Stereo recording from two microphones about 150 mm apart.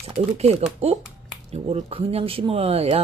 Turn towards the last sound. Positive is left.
turn(degrees=-40)  # may be behind; listen again after turning